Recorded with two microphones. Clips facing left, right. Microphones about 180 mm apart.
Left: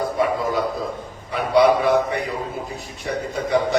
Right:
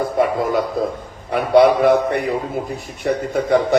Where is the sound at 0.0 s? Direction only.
55° right (ahead or behind).